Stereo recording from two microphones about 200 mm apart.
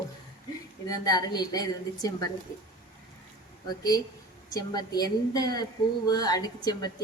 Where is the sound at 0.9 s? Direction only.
20° left (ahead or behind).